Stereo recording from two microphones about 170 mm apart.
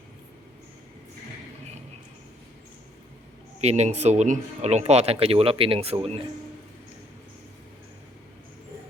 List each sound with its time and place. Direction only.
3.6 s speech: 40° right (ahead or behind)